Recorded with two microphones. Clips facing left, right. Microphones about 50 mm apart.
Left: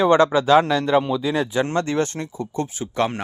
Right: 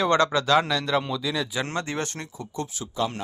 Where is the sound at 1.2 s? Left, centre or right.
Left.